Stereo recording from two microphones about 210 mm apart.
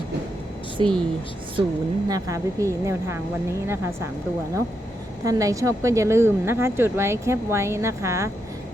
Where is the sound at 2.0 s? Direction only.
15° right (ahead or behind).